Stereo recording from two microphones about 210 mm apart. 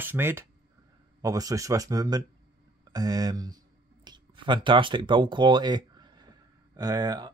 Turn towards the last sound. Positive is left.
turn(degrees=-20)  # may be behind; listen again after turning